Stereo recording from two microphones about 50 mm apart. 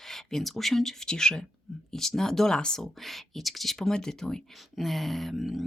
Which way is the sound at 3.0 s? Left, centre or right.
Centre.